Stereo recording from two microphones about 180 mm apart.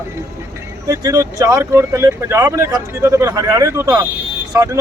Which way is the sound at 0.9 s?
20° right (ahead or behind).